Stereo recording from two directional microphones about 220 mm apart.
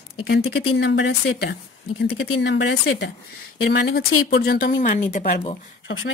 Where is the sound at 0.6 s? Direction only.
50° left (ahead or behind); by 5.6 s 30° left (ahead or behind).